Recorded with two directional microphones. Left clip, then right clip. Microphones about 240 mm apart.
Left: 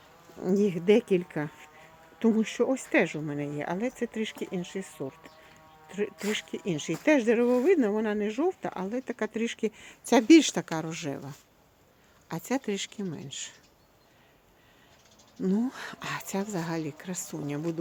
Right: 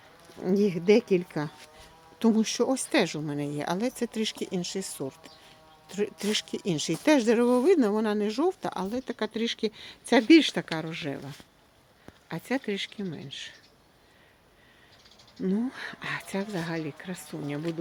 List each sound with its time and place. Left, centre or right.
0.4 s speech: centre
8.8 s speech: centre
15.4 s speech: centre